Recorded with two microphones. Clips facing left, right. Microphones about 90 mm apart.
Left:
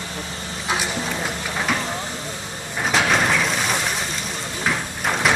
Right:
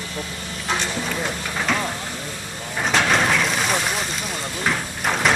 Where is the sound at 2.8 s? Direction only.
Centre (ahead or behind).